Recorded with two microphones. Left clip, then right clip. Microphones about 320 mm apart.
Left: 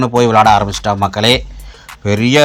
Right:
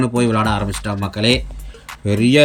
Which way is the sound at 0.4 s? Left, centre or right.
Centre.